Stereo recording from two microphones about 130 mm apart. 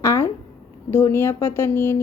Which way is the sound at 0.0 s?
20° left (ahead or behind).